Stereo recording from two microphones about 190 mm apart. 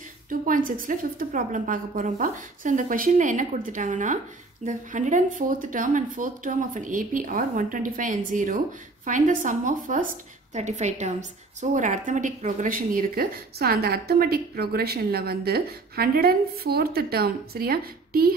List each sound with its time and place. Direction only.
0.3 s speech: 45° right (ahead or behind)